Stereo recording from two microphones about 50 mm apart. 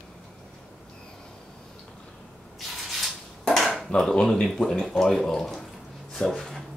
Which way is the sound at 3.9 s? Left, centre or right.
Centre.